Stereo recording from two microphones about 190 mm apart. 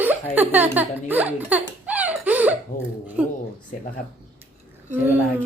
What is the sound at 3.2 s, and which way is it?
Speech, 5° right (ahead or behind).